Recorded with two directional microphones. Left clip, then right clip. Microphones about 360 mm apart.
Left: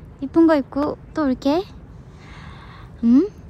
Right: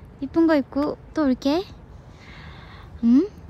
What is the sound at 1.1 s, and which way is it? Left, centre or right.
Speech, centre.